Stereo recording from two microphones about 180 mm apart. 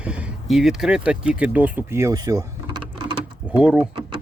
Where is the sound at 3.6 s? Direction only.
5° right (ahead or behind).